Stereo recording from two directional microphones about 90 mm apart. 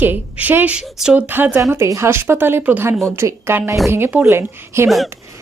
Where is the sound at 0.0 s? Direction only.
20° right (ahead or behind).